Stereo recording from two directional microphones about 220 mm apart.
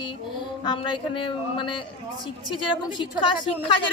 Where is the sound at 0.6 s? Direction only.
20° left (ahead or behind).